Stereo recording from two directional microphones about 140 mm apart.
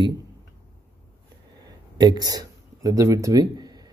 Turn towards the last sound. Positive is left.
turn(degrees=-30)  # may be behind; listen again after turning